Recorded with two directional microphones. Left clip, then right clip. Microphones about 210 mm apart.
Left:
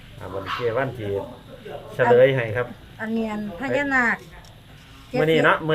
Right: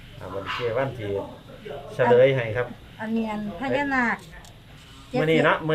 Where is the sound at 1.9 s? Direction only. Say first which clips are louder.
Left 2 dB; 20° left (ahead or behind).